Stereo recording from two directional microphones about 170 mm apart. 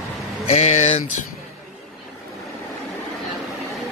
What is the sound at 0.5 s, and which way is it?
Speech, 40° left (ahead or behind).